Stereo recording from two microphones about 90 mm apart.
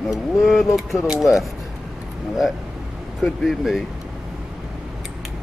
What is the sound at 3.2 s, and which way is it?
Speech, centre (ahead or behind).